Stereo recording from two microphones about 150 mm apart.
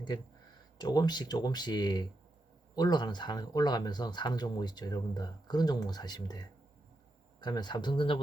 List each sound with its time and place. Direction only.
0.8 s speech: 30° left (ahead or behind)